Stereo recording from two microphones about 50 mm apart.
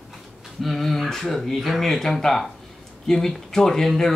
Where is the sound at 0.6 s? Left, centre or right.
Centre.